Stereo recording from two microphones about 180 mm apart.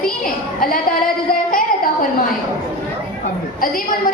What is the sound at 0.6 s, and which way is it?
Speech, 55° left (ahead or behind).